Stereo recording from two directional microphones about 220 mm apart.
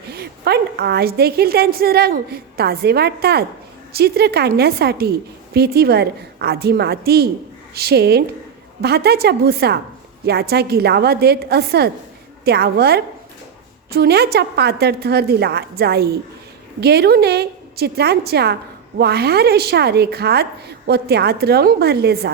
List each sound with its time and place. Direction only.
0.1 s a woman's voice: 45° right (ahead or behind)